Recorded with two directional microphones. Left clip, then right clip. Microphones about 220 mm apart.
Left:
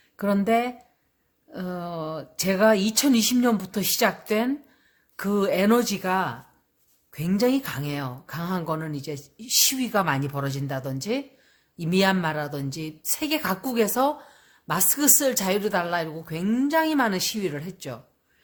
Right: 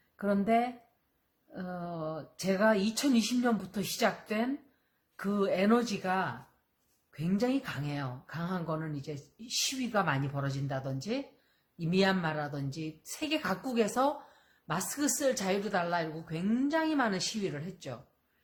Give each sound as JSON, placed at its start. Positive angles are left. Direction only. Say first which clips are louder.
{"t": 0.2, "sound": "speech", "louder": "left 6 dB", "side_deg": 40}